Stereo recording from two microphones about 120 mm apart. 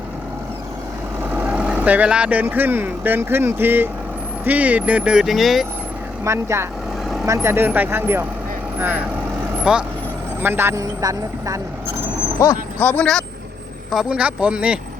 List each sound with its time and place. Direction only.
1.2 s speech: 15° right (ahead or behind)
6.2 s speech: 25° right (ahead or behind); by 9.8 s 5° right (ahead or behind)
10.4 s speech: 20° right (ahead or behind)
12.4 s a man's voice: 20° left (ahead or behind)
12.8 s speech: 10° left (ahead or behind)
14.1 s speech: 10° right (ahead or behind)